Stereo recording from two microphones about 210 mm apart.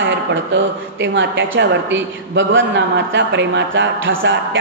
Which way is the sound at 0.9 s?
60° right (ahead or behind).